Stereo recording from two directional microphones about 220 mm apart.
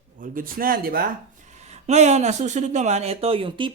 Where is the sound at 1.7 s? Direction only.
30° right (ahead or behind).